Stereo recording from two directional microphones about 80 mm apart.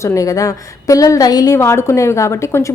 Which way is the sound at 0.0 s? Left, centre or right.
Left.